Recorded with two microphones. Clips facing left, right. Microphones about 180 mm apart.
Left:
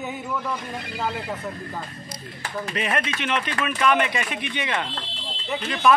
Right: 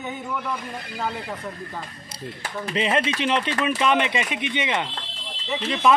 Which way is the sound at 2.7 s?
25° right (ahead or behind).